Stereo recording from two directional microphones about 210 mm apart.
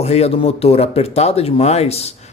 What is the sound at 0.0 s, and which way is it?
Speech, 30° left (ahead or behind).